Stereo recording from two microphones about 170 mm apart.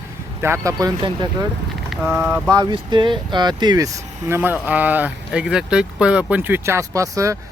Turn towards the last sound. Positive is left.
turn(degrees=-20)  # may be behind; listen again after turning